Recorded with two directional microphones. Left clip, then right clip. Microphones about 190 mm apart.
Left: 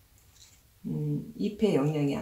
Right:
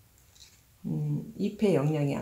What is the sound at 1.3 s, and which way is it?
Speech, 50° right (ahead or behind).